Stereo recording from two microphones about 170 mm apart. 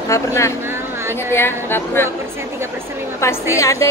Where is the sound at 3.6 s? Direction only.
15° left (ahead or behind).